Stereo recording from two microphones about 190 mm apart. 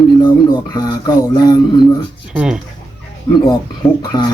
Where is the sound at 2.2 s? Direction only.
5° right (ahead or behind).